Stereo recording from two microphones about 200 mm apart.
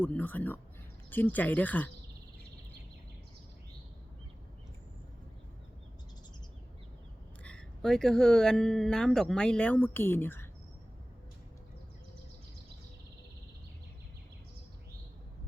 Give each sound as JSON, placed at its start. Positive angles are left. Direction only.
{"t": 0.0, "sound": "speech", "side_deg": 10}
{"t": 7.4, "sound": "speech", "side_deg": 5}